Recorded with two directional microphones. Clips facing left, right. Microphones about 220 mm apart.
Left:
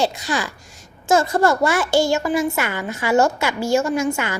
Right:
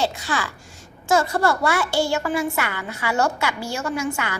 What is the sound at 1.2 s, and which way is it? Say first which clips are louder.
A child's voice: left 4 dB; 45° left (ahead or behind).